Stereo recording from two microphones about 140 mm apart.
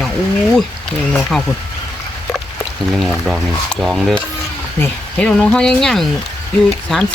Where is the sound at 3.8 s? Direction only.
5° left (ahead or behind).